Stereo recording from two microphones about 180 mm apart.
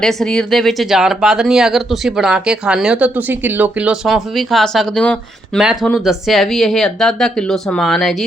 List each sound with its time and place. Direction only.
0.0 s speech: centre (ahead or behind)